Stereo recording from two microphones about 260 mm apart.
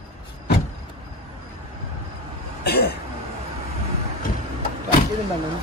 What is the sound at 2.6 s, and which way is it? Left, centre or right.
Cough, left.